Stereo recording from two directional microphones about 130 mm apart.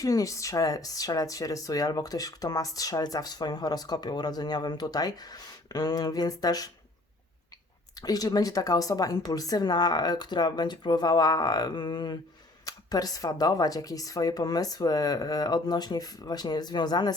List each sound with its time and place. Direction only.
0.0 s speech: 25° left (ahead or behind)
7.9 s speech: 30° left (ahead or behind)